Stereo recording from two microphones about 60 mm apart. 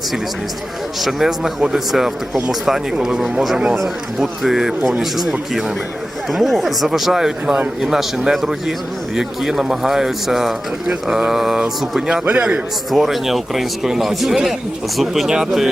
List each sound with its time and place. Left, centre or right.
1.0 s speech: centre
12.2 s a man's voice: right
12.9 s speech: centre